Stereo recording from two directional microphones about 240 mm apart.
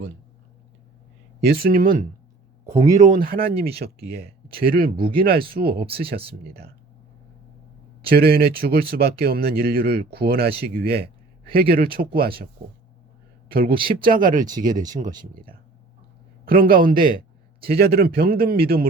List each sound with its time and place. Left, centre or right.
1.4 s speech: right
3.0 s speech: right
6.1 s speech: right
8.0 s speech: right
13.5 s speech: right